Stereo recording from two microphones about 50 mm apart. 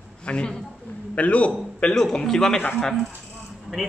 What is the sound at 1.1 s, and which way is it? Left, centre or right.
Speech, left.